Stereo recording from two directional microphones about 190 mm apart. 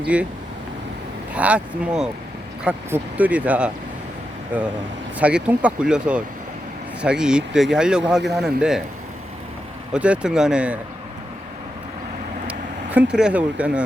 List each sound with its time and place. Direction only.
0.0 s speech: 5° right (ahead or behind)
1.3 s speech: 5° right (ahead or behind)
9.9 s speech: 5° right (ahead or behind)
12.5 s speech: 5° right (ahead or behind)